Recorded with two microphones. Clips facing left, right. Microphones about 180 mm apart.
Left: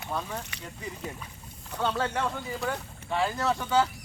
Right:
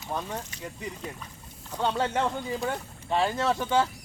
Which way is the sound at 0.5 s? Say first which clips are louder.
Right 4 dB; 70° left (ahead or behind).